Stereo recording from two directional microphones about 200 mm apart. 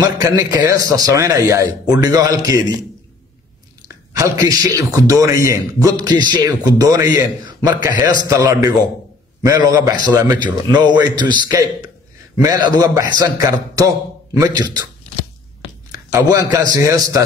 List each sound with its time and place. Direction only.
0.0 s a man's voice: 20° right (ahead or behind)
3.8 s a man's voice: 15° right (ahead or behind)
15.9 s a man's voice: 20° right (ahead or behind)